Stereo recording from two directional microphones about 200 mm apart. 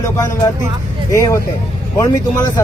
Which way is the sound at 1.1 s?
15° left (ahead or behind).